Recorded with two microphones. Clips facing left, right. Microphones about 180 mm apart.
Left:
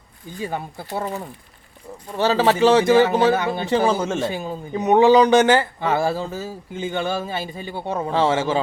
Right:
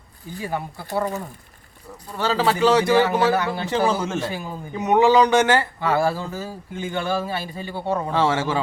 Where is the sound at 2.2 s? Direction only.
25° left (ahead or behind).